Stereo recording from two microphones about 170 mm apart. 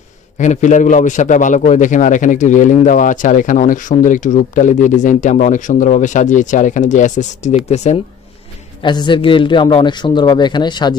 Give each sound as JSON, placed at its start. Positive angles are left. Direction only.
{"t": 0.4, "sound": "a man's voice", "side_deg": 45}
{"t": 8.8, "sound": "a man's voice", "side_deg": 25}